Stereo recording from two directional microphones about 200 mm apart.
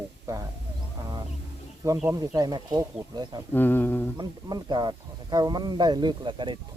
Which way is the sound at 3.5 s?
10° left (ahead or behind).